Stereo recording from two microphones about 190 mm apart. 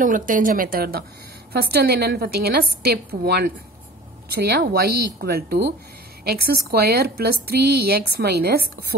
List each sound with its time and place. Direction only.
0.0 s a woman's voice: 45° right (ahead or behind)